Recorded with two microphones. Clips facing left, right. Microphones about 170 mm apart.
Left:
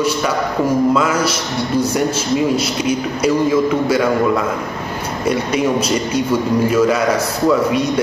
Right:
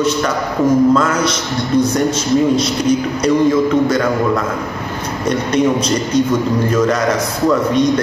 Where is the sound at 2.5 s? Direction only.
5° left (ahead or behind).